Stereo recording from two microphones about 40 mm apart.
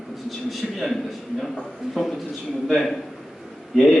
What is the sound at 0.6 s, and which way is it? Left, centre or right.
Speech, centre.